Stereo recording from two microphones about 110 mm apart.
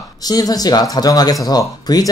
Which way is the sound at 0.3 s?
35° left (ahead or behind).